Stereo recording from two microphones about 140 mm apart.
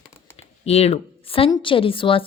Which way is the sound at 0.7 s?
45° left (ahead or behind).